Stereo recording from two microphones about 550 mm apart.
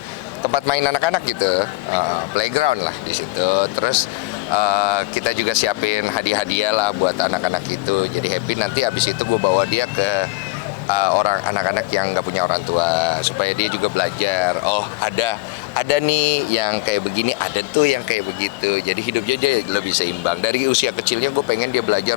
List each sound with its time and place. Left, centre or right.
0.5 s speech: left
2.3 s speech: left